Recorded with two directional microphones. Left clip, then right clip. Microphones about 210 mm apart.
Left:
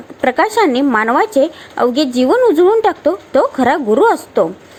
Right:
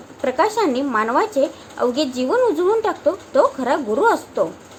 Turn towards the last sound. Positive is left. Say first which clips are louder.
# left 6 dB
turn(degrees=30)  # may be behind; listen again after turning